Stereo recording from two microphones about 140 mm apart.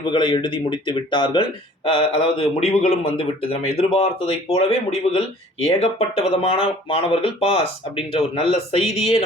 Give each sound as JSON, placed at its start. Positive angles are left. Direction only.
{"t": 0.0, "sound": "speech", "side_deg": 35}